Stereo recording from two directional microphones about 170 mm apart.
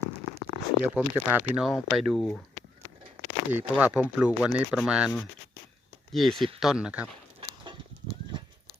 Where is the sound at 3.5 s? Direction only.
10° right (ahead or behind).